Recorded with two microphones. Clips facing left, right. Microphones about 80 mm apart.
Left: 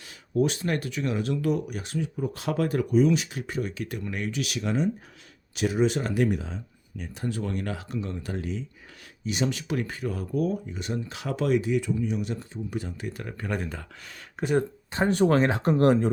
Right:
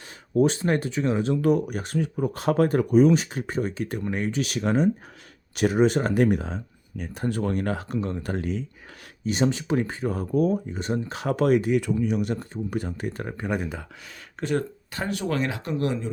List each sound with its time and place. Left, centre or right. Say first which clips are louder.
0.3 s speech: right 4 dB; right
1.4 s speech: right 5 dB; right
9.2 s speech: right 4 dB; right
13.3 s speech: right 1 dB; centre
14.3 s speech: left 1 dB; centre
14.9 s speech: left 6 dB; left